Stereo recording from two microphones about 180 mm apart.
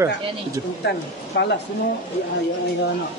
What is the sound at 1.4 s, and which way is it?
Speech, 75° left (ahead or behind).